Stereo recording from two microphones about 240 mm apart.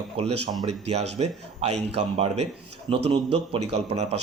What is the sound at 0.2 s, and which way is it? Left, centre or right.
Speech, right.